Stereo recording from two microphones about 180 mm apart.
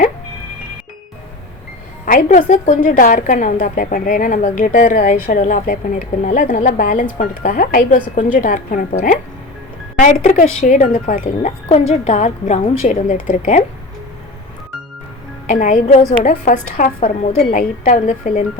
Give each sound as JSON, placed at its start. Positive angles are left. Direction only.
{"t": 2.0, "sound": "a woman's voice", "side_deg": 50}
{"t": 15.4, "sound": "a woman's voice", "side_deg": 50}